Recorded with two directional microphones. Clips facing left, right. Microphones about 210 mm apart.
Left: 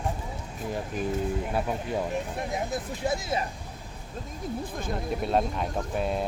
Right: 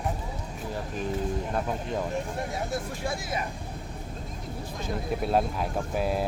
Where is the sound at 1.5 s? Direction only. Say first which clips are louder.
Left 1 dB; 5° left (ahead or behind).